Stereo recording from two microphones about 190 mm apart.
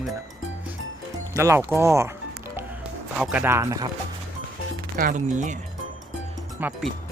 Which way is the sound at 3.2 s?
10° right (ahead or behind).